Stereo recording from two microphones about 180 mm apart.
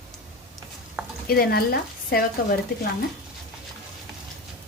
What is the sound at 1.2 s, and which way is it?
Speech, 55° left (ahead or behind).